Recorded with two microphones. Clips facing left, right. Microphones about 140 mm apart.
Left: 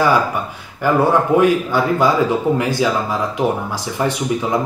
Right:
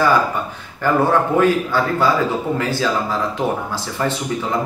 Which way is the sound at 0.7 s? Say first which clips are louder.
Left 1 dB; 15° left (ahead or behind).